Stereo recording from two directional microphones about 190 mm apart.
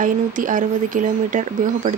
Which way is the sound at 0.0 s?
45° right (ahead or behind).